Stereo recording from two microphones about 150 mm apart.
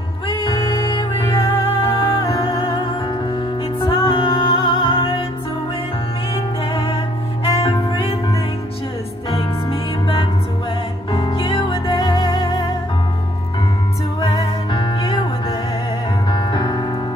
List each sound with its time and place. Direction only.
0.3 s music: 30° left (ahead or behind)
7.4 s music: 35° left (ahead or behind)
14.2 s music: 25° left (ahead or behind)
16.3 s music: 30° left (ahead or behind)